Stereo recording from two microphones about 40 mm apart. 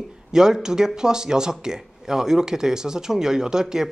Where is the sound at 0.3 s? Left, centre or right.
Centre.